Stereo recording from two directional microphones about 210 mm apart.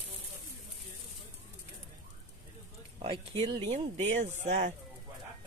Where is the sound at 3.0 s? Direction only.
25° right (ahead or behind).